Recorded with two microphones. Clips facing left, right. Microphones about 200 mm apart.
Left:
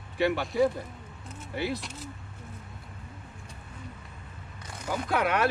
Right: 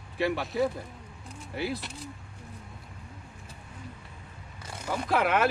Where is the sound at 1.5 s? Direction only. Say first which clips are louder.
Left 1 dB; centre (ahead or behind).